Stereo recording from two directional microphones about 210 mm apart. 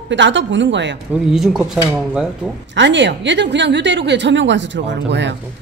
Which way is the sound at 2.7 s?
55° right (ahead or behind).